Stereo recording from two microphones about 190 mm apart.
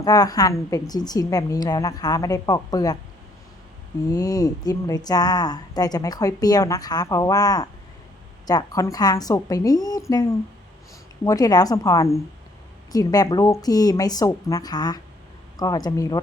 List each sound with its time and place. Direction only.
0.0 s speech: 20° left (ahead or behind)
4.1 s speech: 20° left (ahead or behind)
11.2 s speech: 20° left (ahead or behind)